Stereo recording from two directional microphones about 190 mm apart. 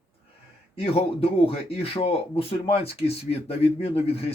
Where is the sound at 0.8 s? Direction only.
30° left (ahead or behind).